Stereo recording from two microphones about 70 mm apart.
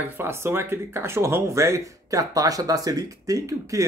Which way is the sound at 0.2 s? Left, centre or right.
Right.